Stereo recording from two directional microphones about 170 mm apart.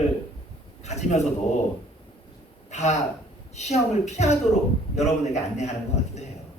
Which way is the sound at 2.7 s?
40° left (ahead or behind).